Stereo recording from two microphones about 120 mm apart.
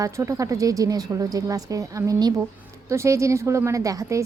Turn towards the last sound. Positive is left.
turn(degrees=-25)  # may be behind; listen again after turning